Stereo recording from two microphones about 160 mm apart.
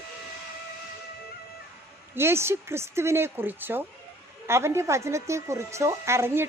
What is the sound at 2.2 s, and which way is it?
Speech, 15° right (ahead or behind).